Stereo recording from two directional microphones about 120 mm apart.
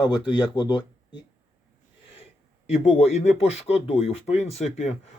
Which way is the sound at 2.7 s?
65° left (ahead or behind).